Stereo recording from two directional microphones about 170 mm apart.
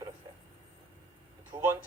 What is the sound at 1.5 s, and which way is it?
Speech, 50° right (ahead or behind).